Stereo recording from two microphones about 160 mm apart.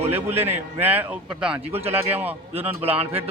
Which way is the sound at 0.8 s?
10° right (ahead or behind).